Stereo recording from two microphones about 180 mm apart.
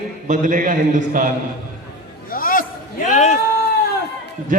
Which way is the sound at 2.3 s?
50° left (ahead or behind).